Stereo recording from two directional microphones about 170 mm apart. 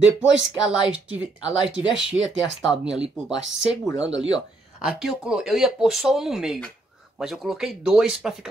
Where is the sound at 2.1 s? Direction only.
5° left (ahead or behind).